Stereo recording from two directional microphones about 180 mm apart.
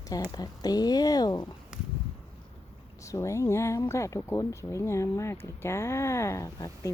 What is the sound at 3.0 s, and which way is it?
Speech, 15° left (ahead or behind).